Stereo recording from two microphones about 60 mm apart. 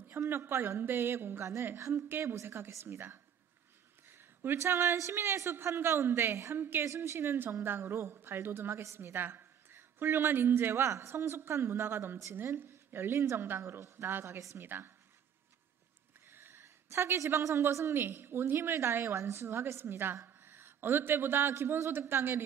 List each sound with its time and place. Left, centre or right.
0.1 s a woman's voice: right
2.0 s a woman's voice: right
4.1 s a sound: right
4.6 s a woman's voice: right
6.8 s a woman's voice: right
13.6 s a woman's voice: right
16.3 s a sound: right
17.6 s a woman's voice: right